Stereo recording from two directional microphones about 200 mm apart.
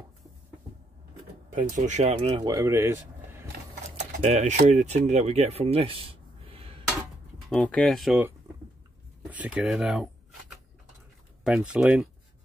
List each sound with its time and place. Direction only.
1.5 s speech: 40° right (ahead or behind); by 3.3 s 15° right (ahead or behind)
4.2 s speech: 35° right (ahead or behind)
7.4 s speech: 5° left (ahead or behind)
9.3 s speech: 5° right (ahead or behind)
11.4 s speech: 5° right (ahead or behind)